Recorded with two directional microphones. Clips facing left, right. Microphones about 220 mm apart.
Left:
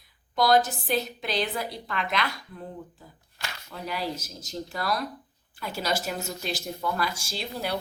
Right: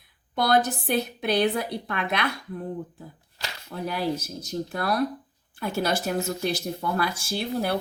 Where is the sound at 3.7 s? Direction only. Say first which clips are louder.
Right 5 dB; 50° right (ahead or behind).